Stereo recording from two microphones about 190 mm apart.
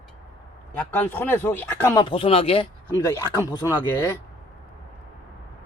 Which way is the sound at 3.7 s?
20° left (ahead or behind).